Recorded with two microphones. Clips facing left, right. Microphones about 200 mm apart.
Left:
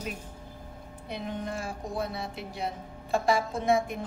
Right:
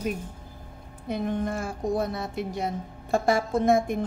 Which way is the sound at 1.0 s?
50° right (ahead or behind).